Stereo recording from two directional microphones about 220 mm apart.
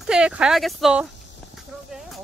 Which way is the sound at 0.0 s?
5° right (ahead or behind).